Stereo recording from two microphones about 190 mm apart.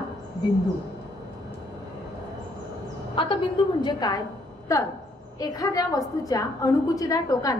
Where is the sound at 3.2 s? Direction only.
25° left (ahead or behind).